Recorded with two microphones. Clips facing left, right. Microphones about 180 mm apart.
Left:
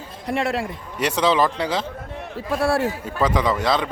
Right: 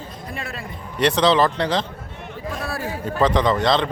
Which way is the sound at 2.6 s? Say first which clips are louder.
Left 11 dB; 75° left (ahead or behind).